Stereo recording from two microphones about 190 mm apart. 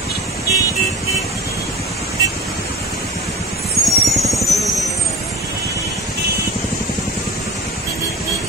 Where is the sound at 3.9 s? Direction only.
Centre (ahead or behind).